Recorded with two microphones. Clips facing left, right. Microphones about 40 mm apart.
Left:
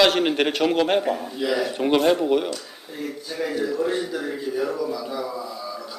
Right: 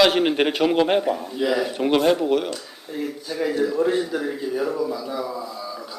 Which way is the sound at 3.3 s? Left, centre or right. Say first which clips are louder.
Right 3 dB; centre.